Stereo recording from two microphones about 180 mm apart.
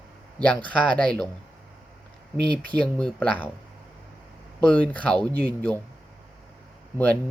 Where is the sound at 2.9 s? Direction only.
5° left (ahead or behind).